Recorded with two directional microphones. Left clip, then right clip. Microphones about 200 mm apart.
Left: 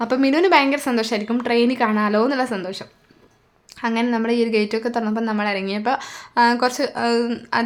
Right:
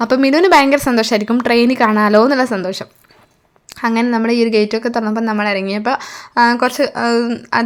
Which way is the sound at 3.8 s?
30° right (ahead or behind).